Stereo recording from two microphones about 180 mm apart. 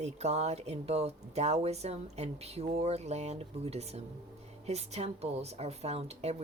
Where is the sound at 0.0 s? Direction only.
35° right (ahead or behind).